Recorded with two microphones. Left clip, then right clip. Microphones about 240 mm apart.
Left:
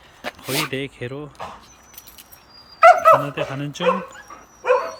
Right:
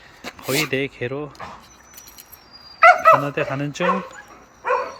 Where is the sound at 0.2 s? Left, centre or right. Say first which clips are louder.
Right 2 dB; centre.